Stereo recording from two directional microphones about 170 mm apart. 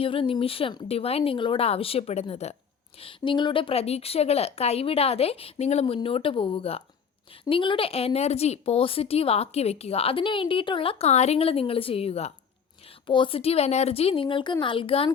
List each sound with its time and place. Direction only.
0.0 s a woman's voice: 30° left (ahead or behind)